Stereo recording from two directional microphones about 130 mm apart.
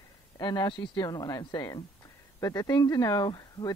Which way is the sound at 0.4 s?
35° left (ahead or behind).